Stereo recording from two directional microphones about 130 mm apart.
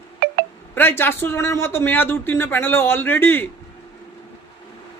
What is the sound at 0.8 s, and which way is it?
A man's voice, 15° left (ahead or behind).